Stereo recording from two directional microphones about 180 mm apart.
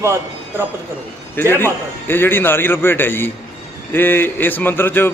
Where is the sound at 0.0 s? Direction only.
15° right (ahead or behind).